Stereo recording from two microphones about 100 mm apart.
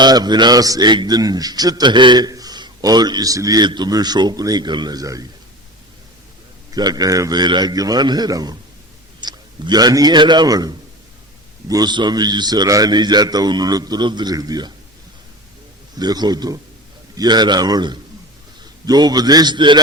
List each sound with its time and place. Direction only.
0.0 s a man's voice: 45° right (ahead or behind)
6.7 s a man's voice: 40° right (ahead or behind)
16.0 s a man's voice: 45° right (ahead or behind)